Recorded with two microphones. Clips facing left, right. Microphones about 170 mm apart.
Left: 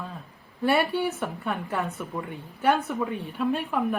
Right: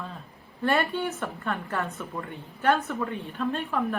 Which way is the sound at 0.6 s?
15° left (ahead or behind).